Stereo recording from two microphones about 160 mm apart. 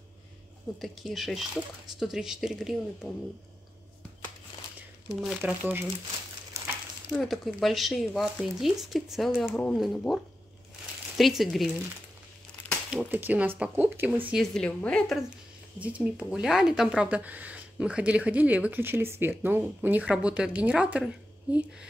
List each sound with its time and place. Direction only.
0.7 s speech: centre (ahead or behind)
5.2 s speech: 10° right (ahead or behind)
7.1 s speech: centre (ahead or behind)
12.9 s speech: 10° right (ahead or behind)
14.4 s speech: 5° left (ahead or behind)